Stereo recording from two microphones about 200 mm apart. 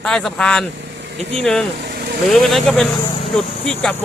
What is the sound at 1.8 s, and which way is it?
Vehicle, 50° right (ahead or behind).